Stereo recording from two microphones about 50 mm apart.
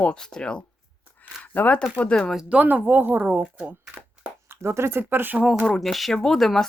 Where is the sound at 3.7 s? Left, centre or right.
Right.